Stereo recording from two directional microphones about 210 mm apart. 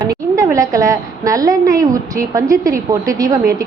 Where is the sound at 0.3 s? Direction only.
15° right (ahead or behind).